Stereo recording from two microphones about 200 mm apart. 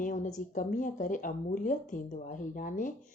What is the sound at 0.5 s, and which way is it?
Speech, 40° left (ahead or behind).